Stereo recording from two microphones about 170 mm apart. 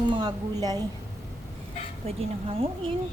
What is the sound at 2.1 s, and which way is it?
Speech, 35° right (ahead or behind).